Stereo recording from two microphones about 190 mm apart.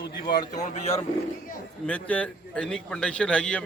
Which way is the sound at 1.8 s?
5° left (ahead or behind).